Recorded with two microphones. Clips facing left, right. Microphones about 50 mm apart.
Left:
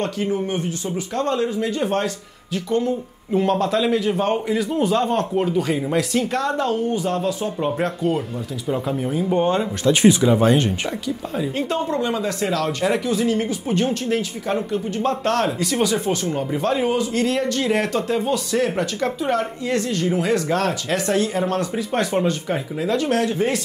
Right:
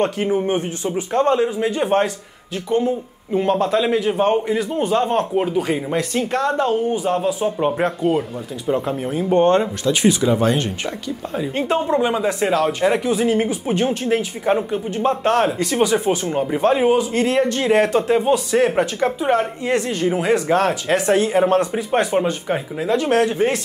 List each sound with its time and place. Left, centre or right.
0.0 s speech: right
3.3 s speech: centre
9.3 s speech: centre
11.3 s speech: centre